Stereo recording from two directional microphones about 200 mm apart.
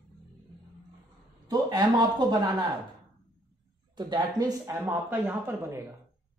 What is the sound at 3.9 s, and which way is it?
Speech, 20° right (ahead or behind).